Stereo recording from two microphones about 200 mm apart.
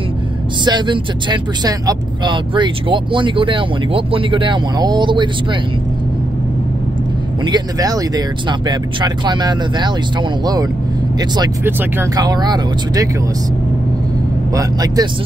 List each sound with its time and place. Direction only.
0.7 s speech: 25° right (ahead or behind)
7.4 s speech: 20° right (ahead or behind)
14.5 s speech: 20° right (ahead or behind)